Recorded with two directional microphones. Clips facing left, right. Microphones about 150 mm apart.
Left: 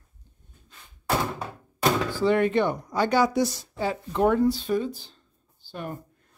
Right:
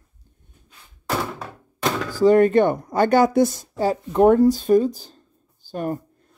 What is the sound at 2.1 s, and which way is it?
Speech, 40° right (ahead or behind).